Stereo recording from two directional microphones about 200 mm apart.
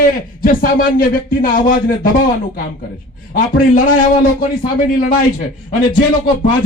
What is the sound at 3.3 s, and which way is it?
Speech, 45° left (ahead or behind).